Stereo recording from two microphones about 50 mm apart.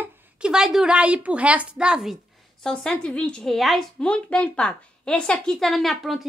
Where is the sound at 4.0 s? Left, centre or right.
Left.